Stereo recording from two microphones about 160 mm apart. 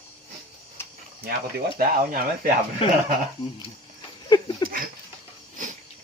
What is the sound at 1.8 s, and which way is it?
Speech, 70° right (ahead or behind).